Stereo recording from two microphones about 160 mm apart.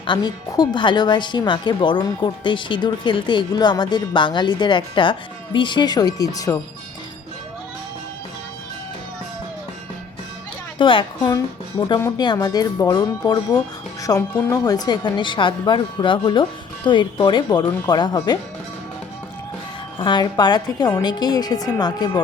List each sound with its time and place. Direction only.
0.0 s speech: 30° left (ahead or behind)
10.8 s speech: 30° left (ahead or behind)
11.9 s speech: 15° left (ahead or behind)
20.0 s speech: 30° left (ahead or behind)